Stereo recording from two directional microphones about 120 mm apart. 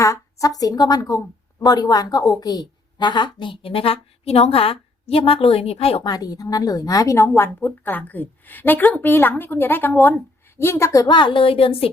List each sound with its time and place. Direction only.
0.0 s a woman's voice: 25° left (ahead or behind); by 6.0 s 55° left (ahead or behind)
6.0 s a woman's voice: 35° left (ahead or behind); by 11.9 s 50° left (ahead or behind)